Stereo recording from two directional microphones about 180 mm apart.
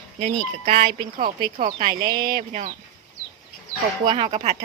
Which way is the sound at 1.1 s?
50° right (ahead or behind).